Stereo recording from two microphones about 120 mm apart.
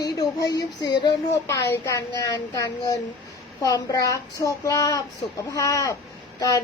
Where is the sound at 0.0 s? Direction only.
30° left (ahead or behind).